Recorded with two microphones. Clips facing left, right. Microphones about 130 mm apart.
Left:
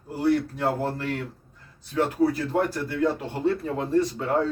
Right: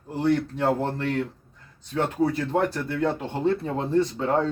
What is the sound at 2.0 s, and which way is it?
Speech, 30° right (ahead or behind).